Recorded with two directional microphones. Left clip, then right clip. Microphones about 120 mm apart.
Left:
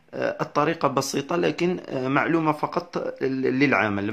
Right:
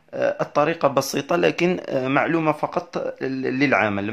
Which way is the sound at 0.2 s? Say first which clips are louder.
Right 3 dB; 25° right (ahead or behind).